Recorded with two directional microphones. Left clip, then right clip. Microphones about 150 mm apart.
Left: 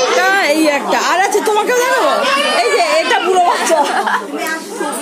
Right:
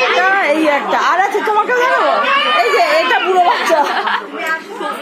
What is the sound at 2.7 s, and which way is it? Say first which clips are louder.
Children playing: right 1 dB; centre (ahead or behind).